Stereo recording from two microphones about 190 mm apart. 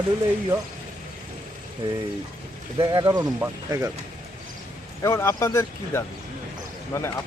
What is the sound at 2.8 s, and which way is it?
Speech, 25° right (ahead or behind).